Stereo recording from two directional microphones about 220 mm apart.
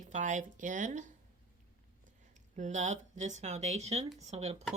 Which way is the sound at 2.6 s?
35° right (ahead or behind).